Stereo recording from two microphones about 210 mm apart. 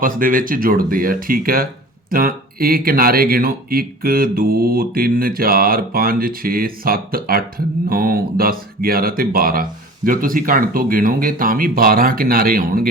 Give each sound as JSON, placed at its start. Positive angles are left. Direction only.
{"t": 0.0, "sound": "speech", "side_deg": -40}